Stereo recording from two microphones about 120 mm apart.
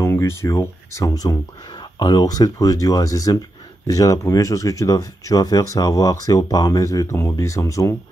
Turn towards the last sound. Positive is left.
turn(degrees=25)  # may be behind; listen again after turning